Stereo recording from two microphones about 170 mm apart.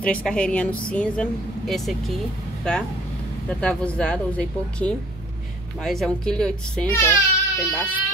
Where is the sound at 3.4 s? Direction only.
5° left (ahead or behind).